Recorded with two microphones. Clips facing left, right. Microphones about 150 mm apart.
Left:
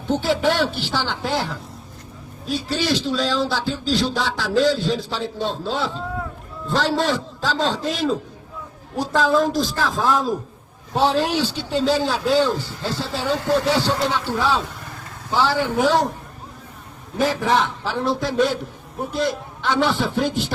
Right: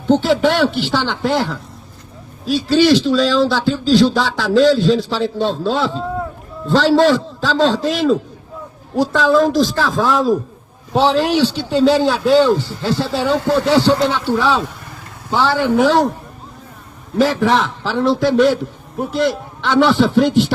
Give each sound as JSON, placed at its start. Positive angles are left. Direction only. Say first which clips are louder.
{"t": 0.1, "sound": "speech", "louder": "right 6 dB", "side_deg": -75}
{"t": 2.5, "sound": "a man's voice", "louder": "right 10 dB", "side_deg": -85}
{"t": 11.9, "sound": "speech", "louder": "right 6 dB", "side_deg": -70}
{"t": 17.2, "sound": "a man's voice", "louder": "right 5 dB", "side_deg": -90}